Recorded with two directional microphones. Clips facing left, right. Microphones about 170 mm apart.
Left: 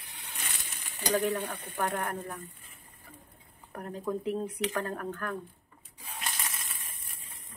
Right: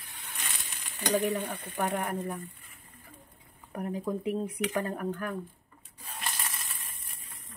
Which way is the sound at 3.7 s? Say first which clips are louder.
Right 2 dB; 10° right (ahead or behind).